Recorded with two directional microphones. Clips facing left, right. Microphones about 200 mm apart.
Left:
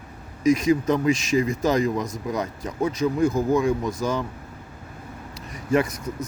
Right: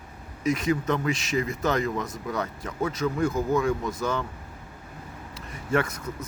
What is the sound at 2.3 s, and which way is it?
Speech, 20° left (ahead or behind).